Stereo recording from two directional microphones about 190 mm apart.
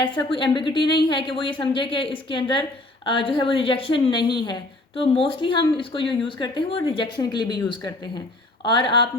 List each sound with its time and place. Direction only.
0.0 s a woman's voice: 25° left (ahead or behind)